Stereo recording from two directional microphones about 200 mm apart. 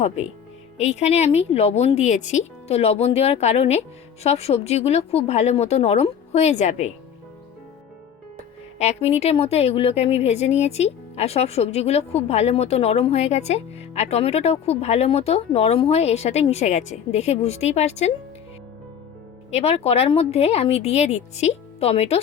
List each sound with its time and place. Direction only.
0.8 s a woman's voice: 35° left (ahead or behind)
8.8 s a woman's voice: 30° left (ahead or behind)
19.5 s a woman's voice: 30° left (ahead or behind)